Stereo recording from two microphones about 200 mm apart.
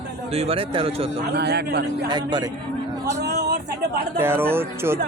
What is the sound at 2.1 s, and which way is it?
Speech, 20° right (ahead or behind).